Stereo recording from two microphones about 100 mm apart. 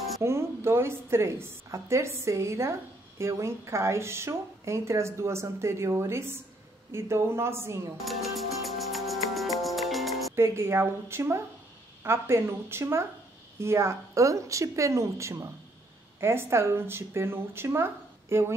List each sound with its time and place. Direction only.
0.2 s speech: 25° right (ahead or behind)
8.0 s music: centre (ahead or behind)
10.3 s speech: 25° right (ahead or behind)